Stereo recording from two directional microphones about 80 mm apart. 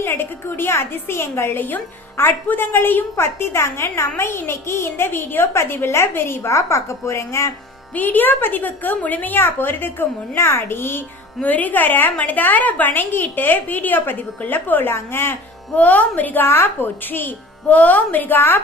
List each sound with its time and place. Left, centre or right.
0.0 s a woman's voice: left
7.9 s a woman's voice: left
15.7 s a woman's voice: centre